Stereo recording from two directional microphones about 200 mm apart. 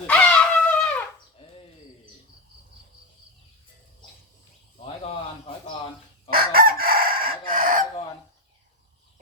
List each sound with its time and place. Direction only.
0.1 s a sound: 5° left (ahead or behind)
1.4 s chop: 25° left (ahead or behind)
6.3 s chicken: 45° right (ahead or behind)